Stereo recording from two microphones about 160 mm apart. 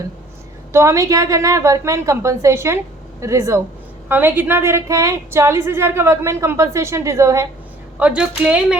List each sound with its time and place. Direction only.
0.7 s a woman's voice: 15° right (ahead or behind)
7.9 s a woman's voice: 10° right (ahead or behind)